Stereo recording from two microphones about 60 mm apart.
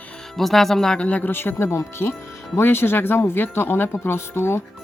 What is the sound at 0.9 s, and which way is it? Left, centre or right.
Jingle bell, left.